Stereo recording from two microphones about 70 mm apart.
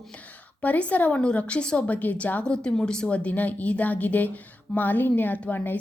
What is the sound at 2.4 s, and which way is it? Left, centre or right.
Speech, centre.